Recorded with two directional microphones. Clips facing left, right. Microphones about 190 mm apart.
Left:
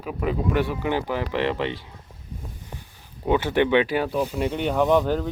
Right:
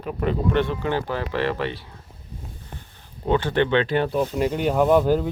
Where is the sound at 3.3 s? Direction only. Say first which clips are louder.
Even; 10° left (ahead or behind); by 5.3 s 5° right (ahead or behind).